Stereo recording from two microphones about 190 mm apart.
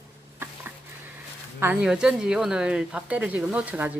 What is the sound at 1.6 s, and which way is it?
Speech, 5° right (ahead or behind).